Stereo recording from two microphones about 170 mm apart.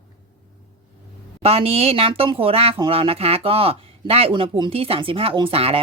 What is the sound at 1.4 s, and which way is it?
A woman's voice, 35° right (ahead or behind).